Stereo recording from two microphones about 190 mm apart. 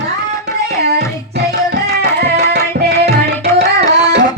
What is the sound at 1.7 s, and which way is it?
Tabla, 60° right (ahead or behind).